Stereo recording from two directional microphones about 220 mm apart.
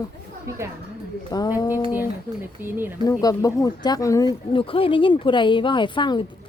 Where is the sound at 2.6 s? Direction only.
10° right (ahead or behind).